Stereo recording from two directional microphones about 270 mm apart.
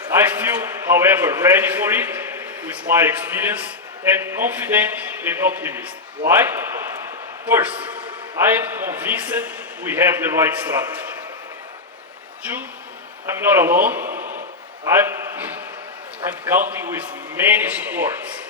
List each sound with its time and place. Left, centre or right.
0.1 s a man's voice: centre
12.4 s a man's voice: centre
14.1 s a sound: right
14.8 s a man's voice: centre